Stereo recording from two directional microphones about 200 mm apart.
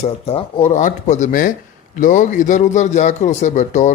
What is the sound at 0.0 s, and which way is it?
A man's voice, 30° left (ahead or behind).